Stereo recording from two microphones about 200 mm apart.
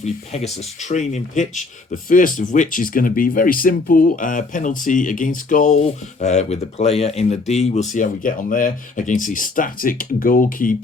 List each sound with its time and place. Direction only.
0.0 s speech: 35° left (ahead or behind)